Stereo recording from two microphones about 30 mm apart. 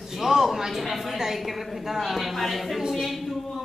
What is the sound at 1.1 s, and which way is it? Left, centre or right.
A woman's voice, centre.